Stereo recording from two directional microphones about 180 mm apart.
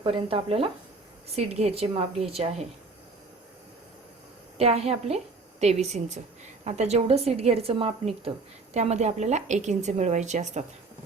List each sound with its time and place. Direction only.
0.0 s a woman's voice: 30° right (ahead or behind)
4.5 s a woman's voice: 35° right (ahead or behind)